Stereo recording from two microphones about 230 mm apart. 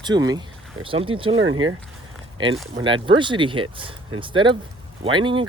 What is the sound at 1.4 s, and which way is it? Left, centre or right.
Speech, right.